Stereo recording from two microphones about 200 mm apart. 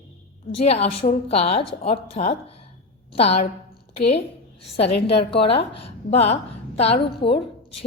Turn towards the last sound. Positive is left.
turn(degrees=30)  # may be behind; listen again after turning